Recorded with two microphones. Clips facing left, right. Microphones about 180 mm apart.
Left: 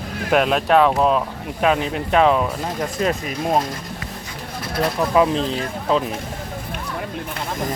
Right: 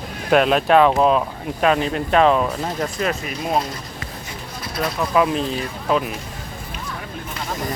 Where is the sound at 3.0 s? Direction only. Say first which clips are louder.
Left 3 dB; 30° left (ahead or behind).